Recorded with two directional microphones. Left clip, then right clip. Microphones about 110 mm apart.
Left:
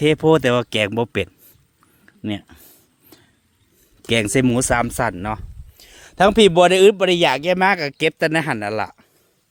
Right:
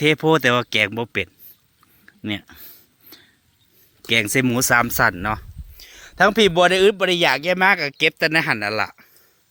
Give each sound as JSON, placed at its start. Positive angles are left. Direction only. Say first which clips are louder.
{"t": 0.0, "sound": "speech", "louder": "left 1 dB", "side_deg": 30}
{"t": 0.8, "sound": "speech", "louder": "left 1 dB", "side_deg": 60}
{"t": 2.0, "sound": "a sound", "louder": "even", "side_deg": 35}
{"t": 4.0, "sound": "speech", "louder": "even", "side_deg": 65}
{"t": 4.4, "sound": "speech", "louder": "right 1 dB", "side_deg": 35}
{"t": 5.7, "sound": "a man's voice", "louder": "left 2 dB", "side_deg": 50}
{"t": 8.3, "sound": "speech", "louder": "right 1 dB", "side_deg": 45}